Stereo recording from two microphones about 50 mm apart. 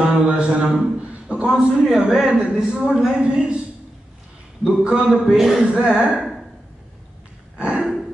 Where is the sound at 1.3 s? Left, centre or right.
Right.